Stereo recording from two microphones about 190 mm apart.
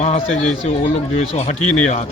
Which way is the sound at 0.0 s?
35° left (ahead or behind).